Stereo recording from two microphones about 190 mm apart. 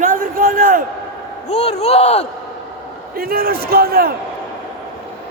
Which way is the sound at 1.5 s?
35° left (ahead or behind).